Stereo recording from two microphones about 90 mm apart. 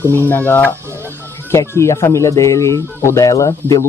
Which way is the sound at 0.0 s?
25° left (ahead or behind).